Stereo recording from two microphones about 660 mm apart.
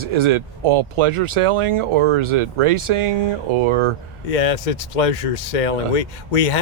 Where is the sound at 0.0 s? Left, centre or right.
Right.